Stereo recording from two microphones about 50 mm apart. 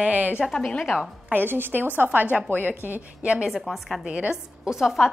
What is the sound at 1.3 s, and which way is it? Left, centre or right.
A woman's voice, right.